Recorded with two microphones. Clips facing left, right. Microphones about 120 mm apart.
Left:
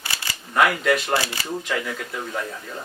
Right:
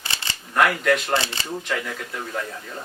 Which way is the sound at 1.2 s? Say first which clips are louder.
Left 1 dB; 25° right (ahead or behind).